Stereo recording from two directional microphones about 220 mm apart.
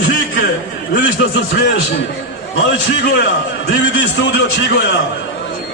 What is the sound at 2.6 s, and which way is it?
A man's voice, 50° left (ahead or behind).